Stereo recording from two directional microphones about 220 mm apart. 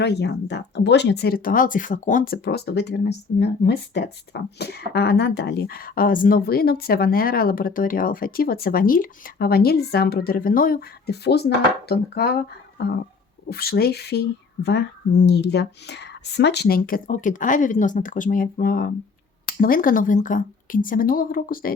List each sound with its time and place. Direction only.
0.0 s speech: 50° left (ahead or behind)
13.5 s a woman's voice: 45° left (ahead or behind)